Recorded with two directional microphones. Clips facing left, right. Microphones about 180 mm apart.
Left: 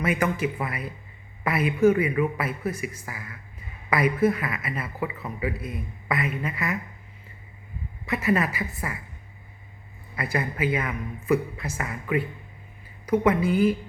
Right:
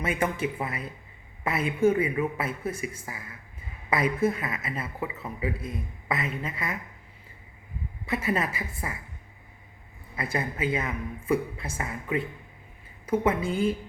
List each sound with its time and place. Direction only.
0.0 s a woman's voice: 30° right (ahead or behind)
5.5 s a man's voice: 5° left (ahead or behind)
6.1 s a woman's voice: 25° right (ahead or behind)
8.0 s a woman's voice: 30° right (ahead or behind)
10.2 s a woman's voice: 25° right (ahead or behind)